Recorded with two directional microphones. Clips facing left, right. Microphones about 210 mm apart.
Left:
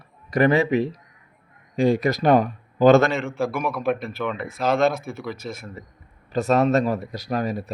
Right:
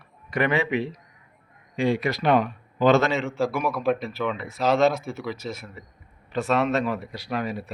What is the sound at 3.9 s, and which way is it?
A man's voice, 55° left (ahead or behind).